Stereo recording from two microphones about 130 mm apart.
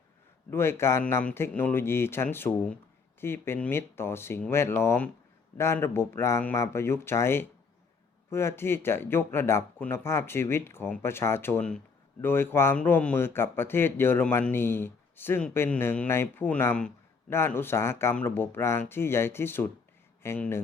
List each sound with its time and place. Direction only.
0.5 s a man's voice: 20° left (ahead or behind)